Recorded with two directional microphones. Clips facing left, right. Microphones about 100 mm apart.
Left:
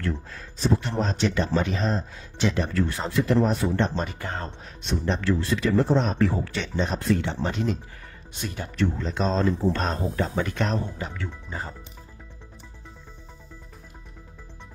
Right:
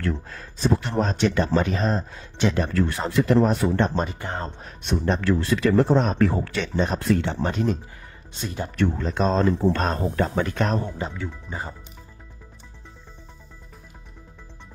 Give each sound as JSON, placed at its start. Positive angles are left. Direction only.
{"t": 0.7, "sound": "speech", "side_deg": -55}
{"t": 2.9, "sound": "speech", "side_deg": -60}
{"t": 4.2, "sound": "speech", "side_deg": -20}
{"t": 4.6, "sound": "speech", "side_deg": -50}
{"t": 11.1, "sound": "speech", "side_deg": -20}